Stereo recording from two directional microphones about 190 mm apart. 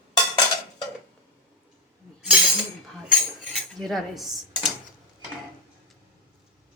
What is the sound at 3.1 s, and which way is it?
Cutlery, centre (ahead or behind).